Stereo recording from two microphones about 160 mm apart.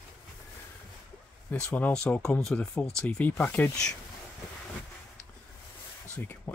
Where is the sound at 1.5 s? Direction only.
10° left (ahead or behind).